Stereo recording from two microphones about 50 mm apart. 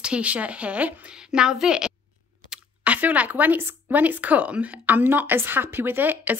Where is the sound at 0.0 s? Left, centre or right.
Right.